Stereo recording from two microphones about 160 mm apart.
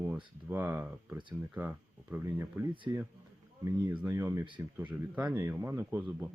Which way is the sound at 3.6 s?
10° right (ahead or behind).